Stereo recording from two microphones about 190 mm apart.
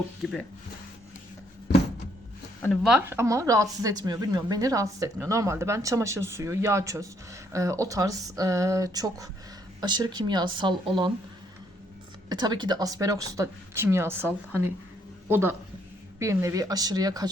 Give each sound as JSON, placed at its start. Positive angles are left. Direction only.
{"t": 0.2, "sound": "speech", "side_deg": 0}
{"t": 2.8, "sound": "a woman's voice", "side_deg": -10}
{"t": 12.3, "sound": "a woman's voice", "side_deg": -20}